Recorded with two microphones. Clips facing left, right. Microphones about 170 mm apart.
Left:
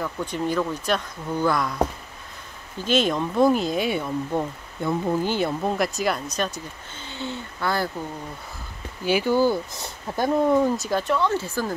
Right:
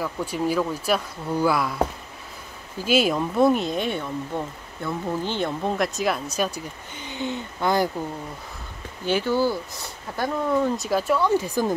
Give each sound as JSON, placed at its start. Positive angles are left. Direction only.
{"t": 0.0, "sound": "speech", "side_deg": -5}
{"t": 4.4, "sound": "speech", "side_deg": 20}
{"t": 5.2, "sound": "speech", "side_deg": 10}
{"t": 7.0, "sound": "speech", "side_deg": -15}
{"t": 9.0, "sound": "speech", "side_deg": 10}
{"t": 10.8, "sound": "speech", "side_deg": -5}